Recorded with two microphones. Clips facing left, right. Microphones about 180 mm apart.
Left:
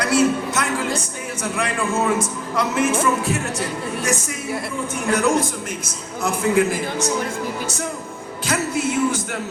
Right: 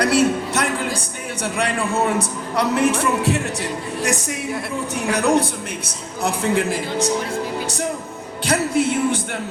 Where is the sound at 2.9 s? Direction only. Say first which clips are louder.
Right 1 dB; 65° right (ahead or behind).